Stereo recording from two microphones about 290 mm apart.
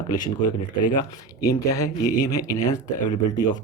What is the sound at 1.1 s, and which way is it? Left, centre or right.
Speech, centre.